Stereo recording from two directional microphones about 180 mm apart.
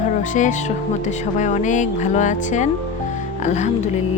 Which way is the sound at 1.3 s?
40° left (ahead or behind).